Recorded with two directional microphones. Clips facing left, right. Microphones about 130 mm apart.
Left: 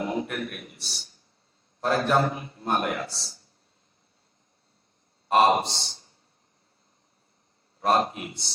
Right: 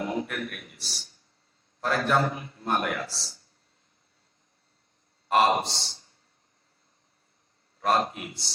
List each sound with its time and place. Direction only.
0.0 s a man's voice: 25° left (ahead or behind)
5.3 s a man's voice: 25° left (ahead or behind)
7.8 s a man's voice: 25° left (ahead or behind)